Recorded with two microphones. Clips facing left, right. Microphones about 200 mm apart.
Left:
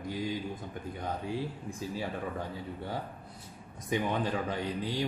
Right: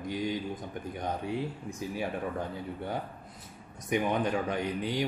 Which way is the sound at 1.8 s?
15° right (ahead or behind).